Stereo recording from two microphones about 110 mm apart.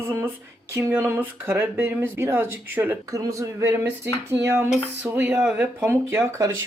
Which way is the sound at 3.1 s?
30° right (ahead or behind).